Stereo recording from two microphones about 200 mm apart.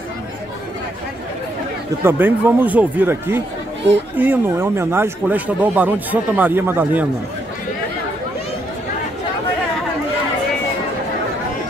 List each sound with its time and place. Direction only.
2.0 s speech: 10° right (ahead or behind)